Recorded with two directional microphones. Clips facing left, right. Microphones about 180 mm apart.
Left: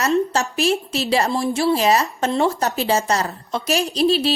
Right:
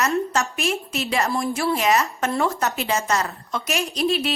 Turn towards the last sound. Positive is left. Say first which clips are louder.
# left 5 dB
turn(degrees=30)  # may be behind; listen again after turning